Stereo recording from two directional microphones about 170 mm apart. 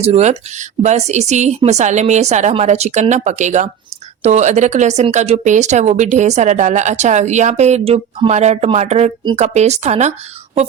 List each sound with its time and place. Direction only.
0.0 s speech: 40° right (ahead or behind)